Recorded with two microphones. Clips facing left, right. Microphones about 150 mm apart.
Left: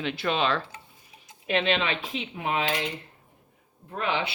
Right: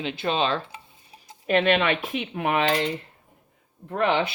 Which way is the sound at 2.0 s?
55° right (ahead or behind).